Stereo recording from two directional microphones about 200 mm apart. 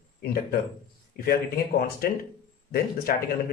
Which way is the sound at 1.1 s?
50° left (ahead or behind).